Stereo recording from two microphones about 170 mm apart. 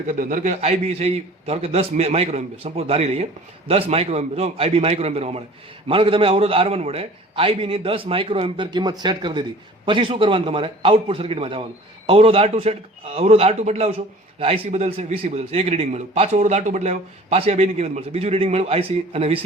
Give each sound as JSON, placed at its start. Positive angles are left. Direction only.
{"t": 0.1, "sound": "a man's voice", "side_deg": -50}